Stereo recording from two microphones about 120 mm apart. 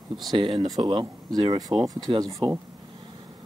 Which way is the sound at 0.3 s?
45° right (ahead or behind).